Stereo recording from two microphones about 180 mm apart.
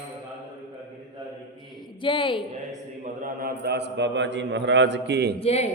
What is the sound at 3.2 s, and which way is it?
A man's voice, 60° right (ahead or behind).